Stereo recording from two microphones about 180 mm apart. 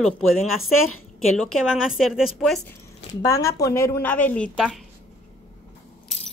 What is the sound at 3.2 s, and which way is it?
A woman's voice, 20° left (ahead or behind).